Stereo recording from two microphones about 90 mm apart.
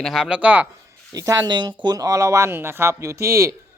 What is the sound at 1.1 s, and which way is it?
Speech, 40° right (ahead or behind).